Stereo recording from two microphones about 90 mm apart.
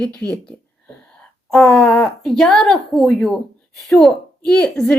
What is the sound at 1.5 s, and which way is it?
Speech, 10° left (ahead or behind).